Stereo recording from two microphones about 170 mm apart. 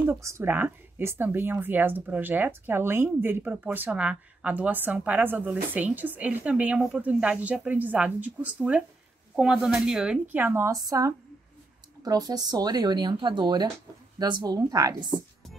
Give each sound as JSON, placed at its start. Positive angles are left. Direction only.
{"t": 0.0, "sound": "a woman's voice", "side_deg": -15}